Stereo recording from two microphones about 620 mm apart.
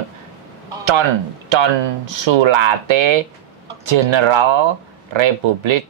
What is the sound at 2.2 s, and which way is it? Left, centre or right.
Speech, right.